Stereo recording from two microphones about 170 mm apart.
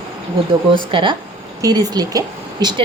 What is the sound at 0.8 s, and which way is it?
A woman's voice, 30° right (ahead or behind).